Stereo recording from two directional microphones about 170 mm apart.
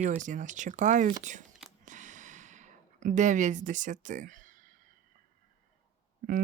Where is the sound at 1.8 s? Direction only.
45° right (ahead or behind).